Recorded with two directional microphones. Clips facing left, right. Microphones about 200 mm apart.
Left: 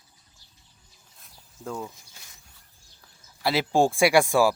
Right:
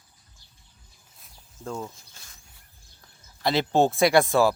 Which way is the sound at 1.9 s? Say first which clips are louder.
Even; 15° left (ahead or behind).